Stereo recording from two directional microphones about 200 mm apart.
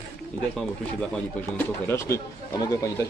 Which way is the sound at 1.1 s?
10° left (ahead or behind).